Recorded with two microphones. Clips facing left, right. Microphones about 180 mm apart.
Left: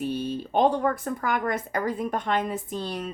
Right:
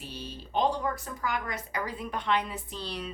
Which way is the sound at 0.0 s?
50° left (ahead or behind).